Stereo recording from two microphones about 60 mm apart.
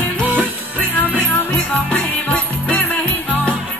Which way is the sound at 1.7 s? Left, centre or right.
Left.